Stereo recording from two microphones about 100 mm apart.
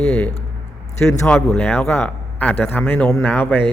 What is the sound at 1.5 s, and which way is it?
A man's voice, 20° left (ahead or behind).